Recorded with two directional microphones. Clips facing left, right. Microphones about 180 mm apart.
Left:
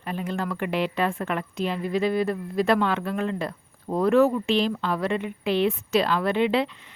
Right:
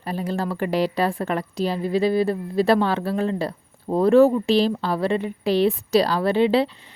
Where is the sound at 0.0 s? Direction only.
35° right (ahead or behind).